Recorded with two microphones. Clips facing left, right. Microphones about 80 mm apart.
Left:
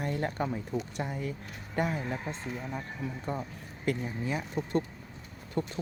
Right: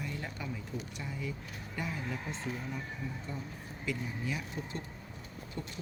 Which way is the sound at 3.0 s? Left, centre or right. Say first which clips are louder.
Left 6 dB; left.